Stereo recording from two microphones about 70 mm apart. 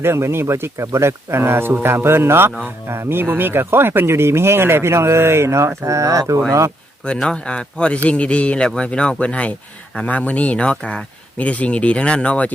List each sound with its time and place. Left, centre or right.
0.0 s speech: right
7.0 s speech: centre